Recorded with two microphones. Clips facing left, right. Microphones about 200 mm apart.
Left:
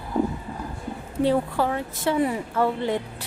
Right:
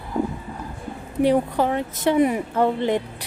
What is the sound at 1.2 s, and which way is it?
Speech, 15° right (ahead or behind).